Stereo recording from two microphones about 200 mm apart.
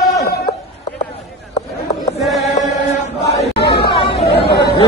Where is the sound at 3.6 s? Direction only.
55° left (ahead or behind).